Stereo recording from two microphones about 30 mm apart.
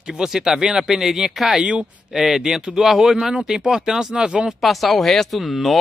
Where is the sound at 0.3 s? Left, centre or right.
Centre.